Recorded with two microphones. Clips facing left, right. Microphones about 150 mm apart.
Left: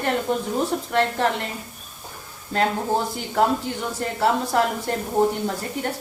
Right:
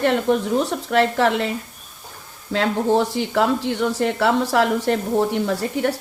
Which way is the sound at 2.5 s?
75° right (ahead or behind).